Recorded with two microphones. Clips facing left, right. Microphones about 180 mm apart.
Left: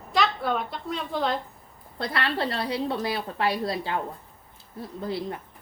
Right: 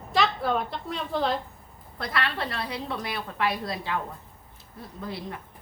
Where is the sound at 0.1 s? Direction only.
Centre (ahead or behind).